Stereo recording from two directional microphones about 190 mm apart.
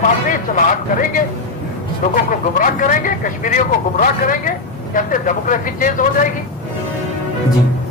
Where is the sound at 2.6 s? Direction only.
45° left (ahead or behind).